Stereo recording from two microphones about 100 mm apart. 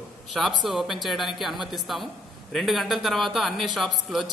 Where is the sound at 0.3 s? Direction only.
Centre (ahead or behind).